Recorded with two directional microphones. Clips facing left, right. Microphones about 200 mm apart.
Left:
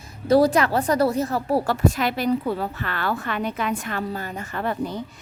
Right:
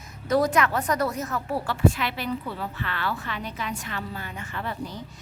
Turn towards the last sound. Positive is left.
turn(degrees=55)  # may be behind; listen again after turning